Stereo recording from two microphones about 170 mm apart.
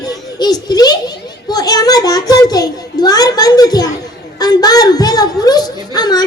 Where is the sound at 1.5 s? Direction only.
25° left (ahead or behind).